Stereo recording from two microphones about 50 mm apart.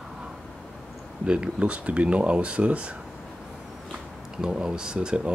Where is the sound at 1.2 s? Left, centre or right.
Right.